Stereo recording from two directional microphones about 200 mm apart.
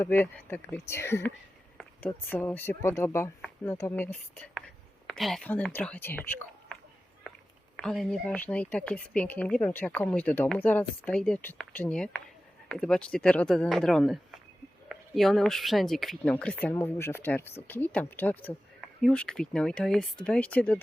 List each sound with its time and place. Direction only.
0.0 s speech: 10° left (ahead or behind)
7.3 s cat: centre (ahead or behind)
7.8 s speech: centre (ahead or behind)